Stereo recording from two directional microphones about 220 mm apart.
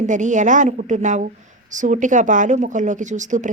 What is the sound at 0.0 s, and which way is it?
A woman's voice, 35° right (ahead or behind).